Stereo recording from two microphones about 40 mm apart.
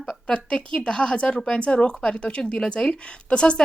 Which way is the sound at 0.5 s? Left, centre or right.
Left.